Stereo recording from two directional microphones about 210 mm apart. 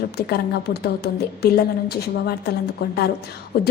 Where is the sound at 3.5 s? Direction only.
50° left (ahead or behind).